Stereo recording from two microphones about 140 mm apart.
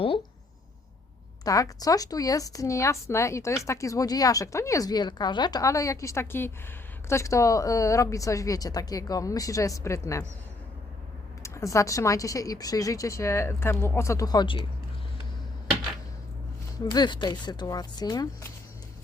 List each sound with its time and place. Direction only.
1.5 s a woman's voice: 25° left (ahead or behind)
11.4 s a woman's voice: 20° left (ahead or behind); by 14.7 s 35° left (ahead or behind)
16.8 s a woman's voice: 30° left (ahead or behind)